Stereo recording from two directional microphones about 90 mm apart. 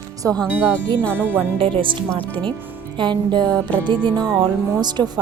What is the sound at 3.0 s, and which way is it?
Speech, 60° right (ahead or behind).